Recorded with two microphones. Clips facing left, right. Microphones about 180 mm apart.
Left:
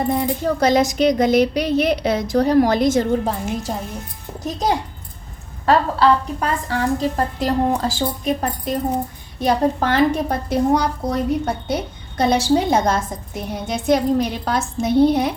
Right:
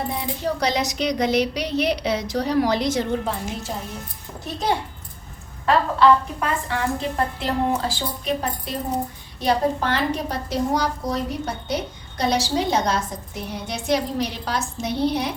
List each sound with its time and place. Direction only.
0.1 s a woman's voice: 50° left (ahead or behind)